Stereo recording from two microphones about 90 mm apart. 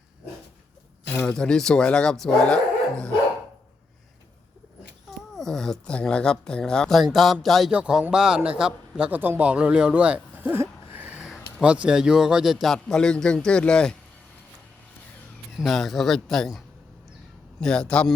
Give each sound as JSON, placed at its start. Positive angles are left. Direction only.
{"t": 1.3, "sound": "speech", "side_deg": 10}
{"t": 5.3, "sound": "a man's voice", "side_deg": 5}
{"t": 7.7, "sound": "a man's voice", "side_deg": -10}
{"t": 15.5, "sound": "a man's voice", "side_deg": 0}